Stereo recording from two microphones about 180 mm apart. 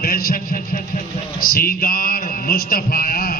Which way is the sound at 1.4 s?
55° left (ahead or behind).